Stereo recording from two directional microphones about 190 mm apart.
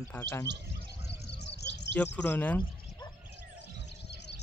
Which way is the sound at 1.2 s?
65° left (ahead or behind).